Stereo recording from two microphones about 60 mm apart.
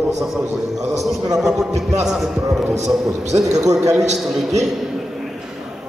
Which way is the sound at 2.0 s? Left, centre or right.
Centre.